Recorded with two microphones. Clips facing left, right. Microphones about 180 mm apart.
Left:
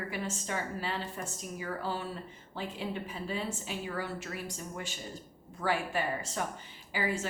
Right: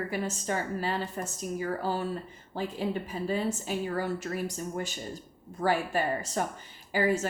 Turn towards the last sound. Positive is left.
turn(degrees=-45)  # may be behind; listen again after turning